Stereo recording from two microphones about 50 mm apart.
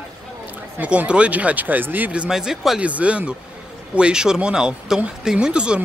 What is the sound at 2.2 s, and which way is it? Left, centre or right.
Speech, centre.